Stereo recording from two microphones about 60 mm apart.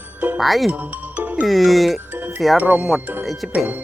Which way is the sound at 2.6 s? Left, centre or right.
Right.